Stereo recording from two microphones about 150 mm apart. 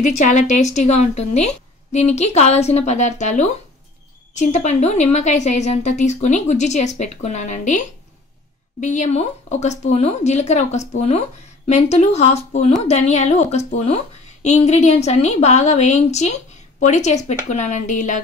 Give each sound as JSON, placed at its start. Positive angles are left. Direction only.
{"t": 0.0, "sound": "speech", "side_deg": 55}
{"t": 8.8, "sound": "speech", "side_deg": 55}